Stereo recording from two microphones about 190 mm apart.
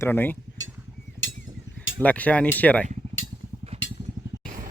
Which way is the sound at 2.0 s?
5° left (ahead or behind).